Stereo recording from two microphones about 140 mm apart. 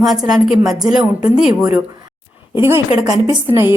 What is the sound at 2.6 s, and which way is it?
A woman's voice, 15° right (ahead or behind).